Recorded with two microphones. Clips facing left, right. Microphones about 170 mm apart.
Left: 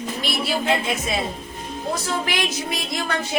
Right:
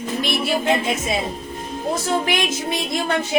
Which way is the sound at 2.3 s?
25° right (ahead or behind).